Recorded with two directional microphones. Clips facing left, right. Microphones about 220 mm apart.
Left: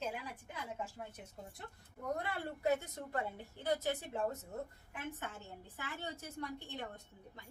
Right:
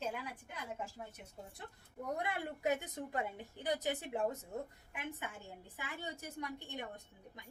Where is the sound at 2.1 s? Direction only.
15° right (ahead or behind).